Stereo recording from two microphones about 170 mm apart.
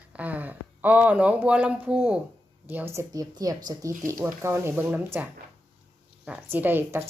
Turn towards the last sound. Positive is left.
turn(degrees=-15)  # may be behind; listen again after turning